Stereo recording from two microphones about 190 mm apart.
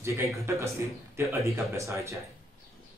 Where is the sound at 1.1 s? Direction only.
15° right (ahead or behind).